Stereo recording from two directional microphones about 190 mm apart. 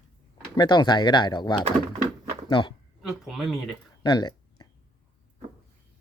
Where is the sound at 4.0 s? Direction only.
20° left (ahead or behind).